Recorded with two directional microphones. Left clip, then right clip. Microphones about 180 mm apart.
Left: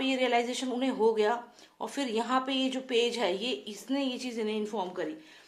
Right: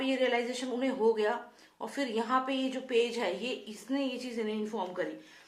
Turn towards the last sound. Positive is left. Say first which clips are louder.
# left 1 dB
turn(degrees=40)  # may be behind; listen again after turning